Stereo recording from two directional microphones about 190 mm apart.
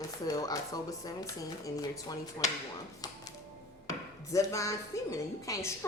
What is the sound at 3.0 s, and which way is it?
Music, 20° left (ahead or behind).